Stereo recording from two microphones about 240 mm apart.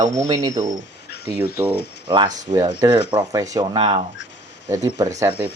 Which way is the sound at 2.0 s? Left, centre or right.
Centre.